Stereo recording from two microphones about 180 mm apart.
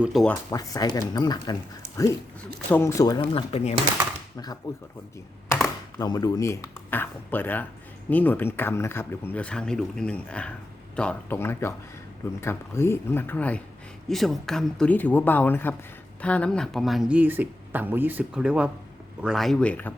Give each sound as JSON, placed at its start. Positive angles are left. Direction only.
{"t": 0.0, "sound": "speech", "side_deg": 0}
{"t": 0.5, "sound": "speech", "side_deg": 20}
{"t": 2.4, "sound": "speech", "side_deg": 10}
{"t": 3.3, "sound": "speech", "side_deg": 35}
{"t": 6.0, "sound": "speech", "side_deg": 20}